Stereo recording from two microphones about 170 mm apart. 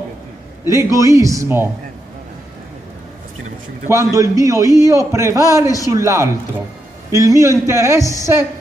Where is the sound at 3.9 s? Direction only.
20° right (ahead or behind).